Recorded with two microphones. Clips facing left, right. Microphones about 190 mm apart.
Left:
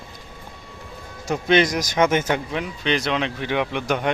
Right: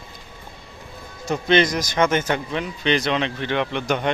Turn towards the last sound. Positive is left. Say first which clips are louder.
# even
turn(degrees=5)  # may be behind; listen again after turning